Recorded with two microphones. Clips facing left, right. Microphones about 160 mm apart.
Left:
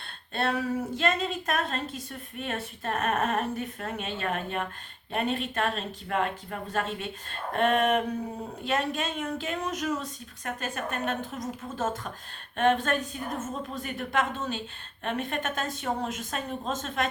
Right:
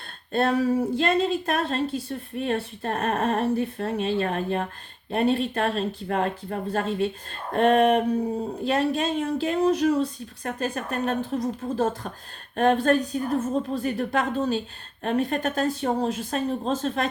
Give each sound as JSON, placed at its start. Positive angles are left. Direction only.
{"t": 0.3, "sound": "speech", "side_deg": -40}